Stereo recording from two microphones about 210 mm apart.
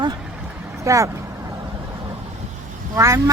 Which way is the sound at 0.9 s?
15° right (ahead or behind).